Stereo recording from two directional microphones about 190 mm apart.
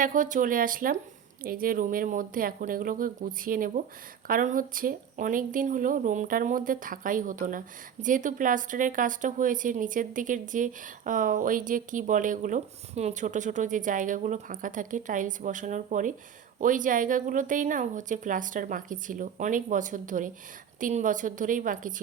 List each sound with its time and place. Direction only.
0.0 s a woman's voice: 45° right (ahead or behind)